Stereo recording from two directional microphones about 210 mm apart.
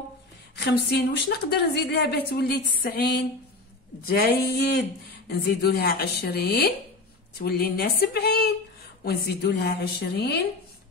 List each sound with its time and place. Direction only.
0.7 s a woman's voice: 55° left (ahead or behind)